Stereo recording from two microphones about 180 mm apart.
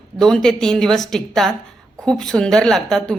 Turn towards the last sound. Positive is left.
turn(degrees=5)  # may be behind; listen again after turning